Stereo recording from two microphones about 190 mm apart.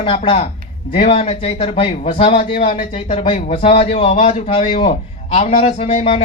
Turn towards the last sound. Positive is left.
turn(degrees=30)  # may be behind; listen again after turning